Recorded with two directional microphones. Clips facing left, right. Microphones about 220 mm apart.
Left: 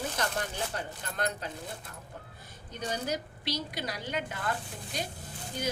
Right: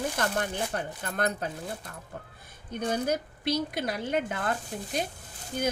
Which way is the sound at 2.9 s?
55° right (ahead or behind).